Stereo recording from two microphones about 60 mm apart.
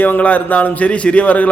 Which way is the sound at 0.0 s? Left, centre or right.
Left.